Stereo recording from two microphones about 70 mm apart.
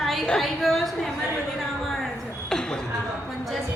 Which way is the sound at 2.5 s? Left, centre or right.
Centre.